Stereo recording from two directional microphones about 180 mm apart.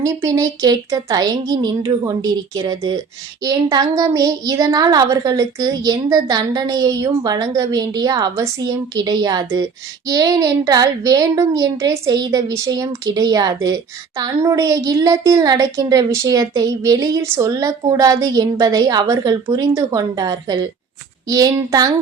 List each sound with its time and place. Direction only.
0.3 s a woman's voice: 20° right (ahead or behind)